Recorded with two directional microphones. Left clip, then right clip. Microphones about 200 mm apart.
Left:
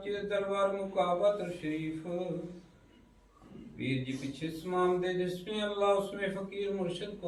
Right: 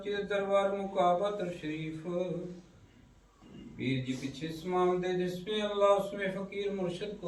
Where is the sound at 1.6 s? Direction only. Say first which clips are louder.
Left 2 dB; centre (ahead or behind).